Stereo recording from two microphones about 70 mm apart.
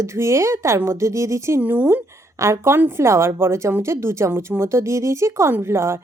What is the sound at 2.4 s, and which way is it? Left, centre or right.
A woman's voice, right.